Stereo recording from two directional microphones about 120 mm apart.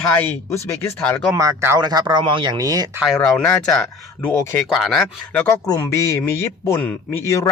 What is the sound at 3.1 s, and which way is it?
Speech, 5° left (ahead or behind).